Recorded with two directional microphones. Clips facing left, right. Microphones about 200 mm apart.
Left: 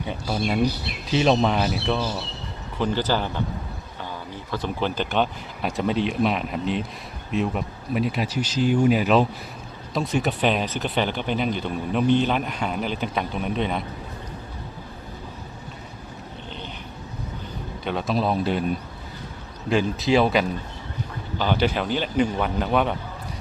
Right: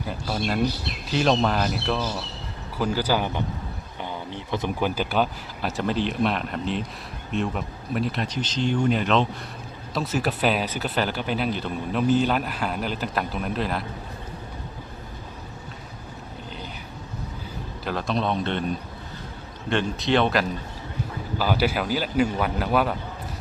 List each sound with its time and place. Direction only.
0.0 s speech: centre (ahead or behind)
4.5 s speech: 20° right (ahead or behind)
4.9 s speech: 5° right (ahead or behind)
17.8 s speech: centre (ahead or behind)
19.7 s speech: centre (ahead or behind)